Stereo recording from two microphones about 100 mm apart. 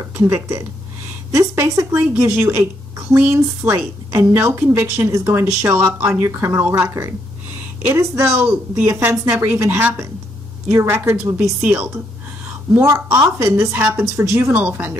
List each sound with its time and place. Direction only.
1.3 s a woman's voice: 25° right (ahead or behind)
6.7 s a woman's voice: 30° right (ahead or behind)